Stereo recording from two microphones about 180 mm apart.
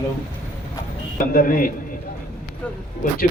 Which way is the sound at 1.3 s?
50° left (ahead or behind).